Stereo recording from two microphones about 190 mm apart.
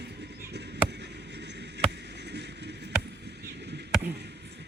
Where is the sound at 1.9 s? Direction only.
65° right (ahead or behind).